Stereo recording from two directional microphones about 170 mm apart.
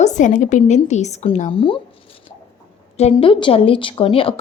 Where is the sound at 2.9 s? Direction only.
35° left (ahead or behind).